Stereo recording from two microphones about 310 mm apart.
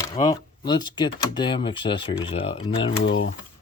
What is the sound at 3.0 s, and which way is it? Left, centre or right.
Speech, left.